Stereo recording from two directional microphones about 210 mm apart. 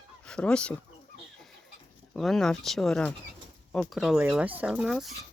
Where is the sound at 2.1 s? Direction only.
Centre (ahead or behind).